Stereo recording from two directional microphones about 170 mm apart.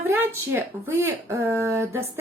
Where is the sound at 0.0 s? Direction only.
10° right (ahead or behind).